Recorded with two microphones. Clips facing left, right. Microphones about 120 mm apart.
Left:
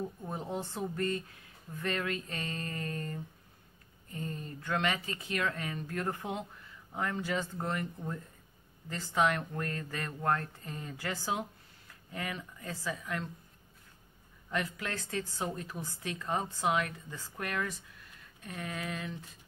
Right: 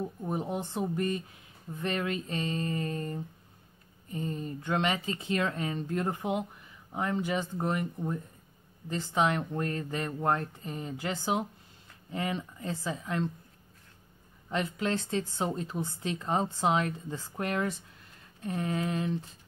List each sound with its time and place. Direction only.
0.2 s speech: 20° right (ahead or behind)
14.5 s speech: 25° right (ahead or behind)